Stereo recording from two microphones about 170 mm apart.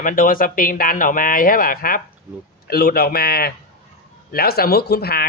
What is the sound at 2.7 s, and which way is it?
Speech, 65° left (ahead or behind).